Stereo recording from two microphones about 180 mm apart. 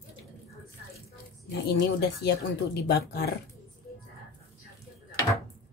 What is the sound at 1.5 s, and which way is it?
Speech, 65° left (ahead or behind).